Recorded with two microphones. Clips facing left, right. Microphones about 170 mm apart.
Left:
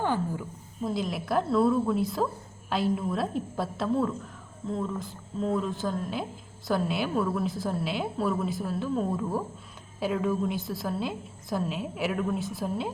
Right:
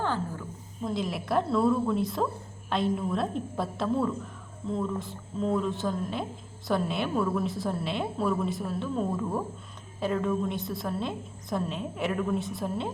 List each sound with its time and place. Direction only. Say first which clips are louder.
0.0 s speech: left 2 dB; 15° left (ahead or behind)
0.9 s a woman's voice: even; centre (ahead or behind)